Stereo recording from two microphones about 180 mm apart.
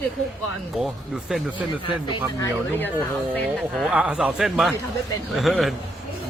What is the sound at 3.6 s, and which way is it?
A man's voice, centre (ahead or behind).